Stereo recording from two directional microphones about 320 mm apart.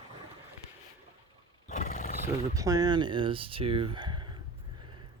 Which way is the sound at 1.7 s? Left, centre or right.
Left.